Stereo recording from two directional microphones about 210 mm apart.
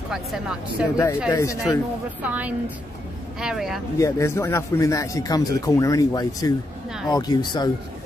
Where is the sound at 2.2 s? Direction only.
5° right (ahead or behind).